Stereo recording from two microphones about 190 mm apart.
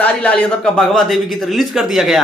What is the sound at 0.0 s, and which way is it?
Speech, 5° left (ahead or behind).